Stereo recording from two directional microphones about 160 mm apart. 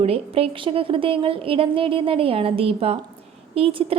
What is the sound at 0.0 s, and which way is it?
A woman's voice, 40° right (ahead or behind).